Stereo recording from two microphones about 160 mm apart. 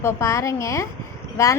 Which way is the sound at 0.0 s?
20° left (ahead or behind).